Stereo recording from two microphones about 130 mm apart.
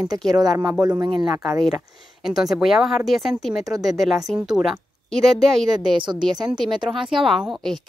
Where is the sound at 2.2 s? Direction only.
5° right (ahead or behind).